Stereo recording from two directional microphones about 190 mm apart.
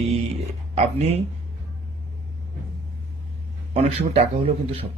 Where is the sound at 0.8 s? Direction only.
30° right (ahead or behind).